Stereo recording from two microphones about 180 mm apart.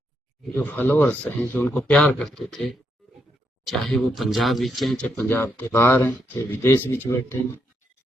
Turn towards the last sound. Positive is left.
turn(degrees=15)  # may be behind; listen again after turning